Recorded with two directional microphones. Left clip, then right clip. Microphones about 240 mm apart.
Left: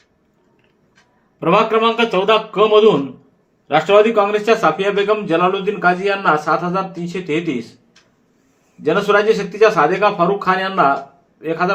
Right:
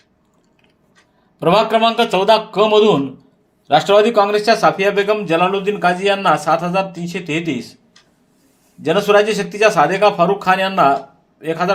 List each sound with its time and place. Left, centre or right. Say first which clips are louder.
1.4 s a man's voice: right 1 dB; right
8.8 s a man's voice: right 1 dB; right